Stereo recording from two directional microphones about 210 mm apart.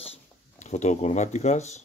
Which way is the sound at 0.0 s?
30° left (ahead or behind).